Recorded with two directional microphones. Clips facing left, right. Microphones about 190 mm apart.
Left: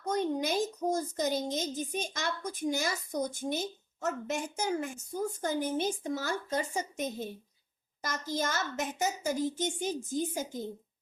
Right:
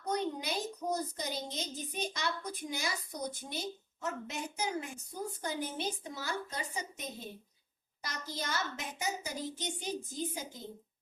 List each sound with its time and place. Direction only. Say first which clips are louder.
0.0 s a woman's voice: left 4 dB; 45° left (ahead or behind)